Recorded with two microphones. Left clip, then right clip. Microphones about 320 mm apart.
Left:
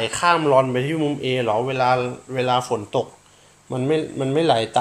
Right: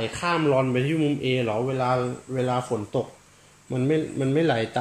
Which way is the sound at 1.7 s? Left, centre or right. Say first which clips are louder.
Left 5 dB; left.